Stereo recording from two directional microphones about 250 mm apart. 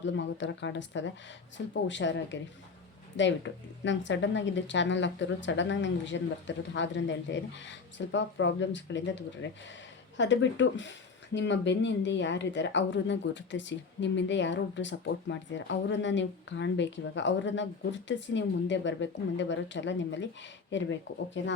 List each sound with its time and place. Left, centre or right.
0.0 s speech: left
21.4 s speech: left